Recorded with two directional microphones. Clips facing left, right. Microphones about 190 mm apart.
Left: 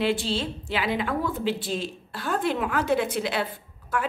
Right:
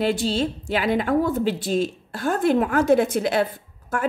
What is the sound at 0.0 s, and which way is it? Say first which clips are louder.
A woman's voice: right 4 dB; 40° right (ahead or behind).